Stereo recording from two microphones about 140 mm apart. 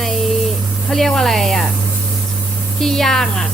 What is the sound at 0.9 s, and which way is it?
Speech, 5° left (ahead or behind).